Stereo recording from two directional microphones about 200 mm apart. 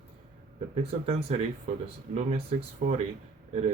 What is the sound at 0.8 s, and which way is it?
Speech, 30° right (ahead or behind).